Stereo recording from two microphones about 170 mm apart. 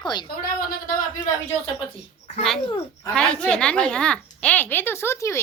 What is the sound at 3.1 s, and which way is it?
A woman's voice, 5° left (ahead or behind).